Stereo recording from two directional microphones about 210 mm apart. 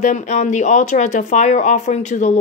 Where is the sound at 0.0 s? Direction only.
35° left (ahead or behind).